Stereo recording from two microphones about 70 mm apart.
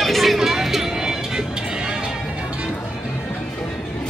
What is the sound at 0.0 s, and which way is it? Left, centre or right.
Music, centre.